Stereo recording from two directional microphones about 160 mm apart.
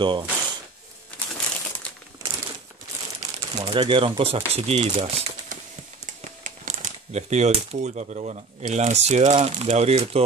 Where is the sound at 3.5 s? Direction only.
30° right (ahead or behind).